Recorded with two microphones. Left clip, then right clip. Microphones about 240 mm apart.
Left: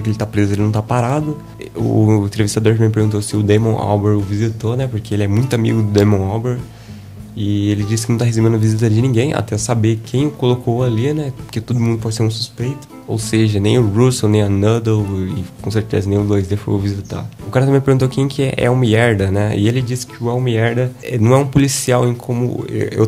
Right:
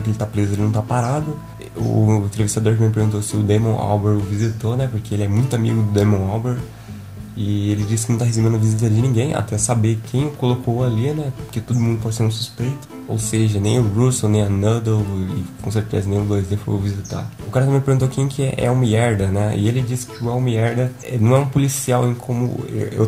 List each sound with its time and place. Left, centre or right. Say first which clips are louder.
0.2 s speech: left 5 dB; left
2.4 s speech: left 5 dB; left
17.9 s speech: left 5 dB; left